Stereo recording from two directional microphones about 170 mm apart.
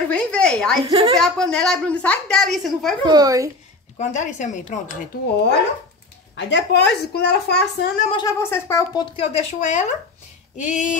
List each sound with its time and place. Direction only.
0.1 s a sound: 5° left (ahead or behind)
0.8 s a woman's voice: 30° right (ahead or behind)
1.1 s a woman's voice: 5° left (ahead or behind)
3.1 s a child's voice: 20° right (ahead or behind)
4.0 s speech: 45° left (ahead or behind)
5.1 s speech: 60° left (ahead or behind)
6.3 s a woman's voice: 90° left; by 7.9 s 70° left (ahead or behind)
8.1 s speech: 20° left (ahead or behind)
9.0 s speech: 35° left (ahead or behind)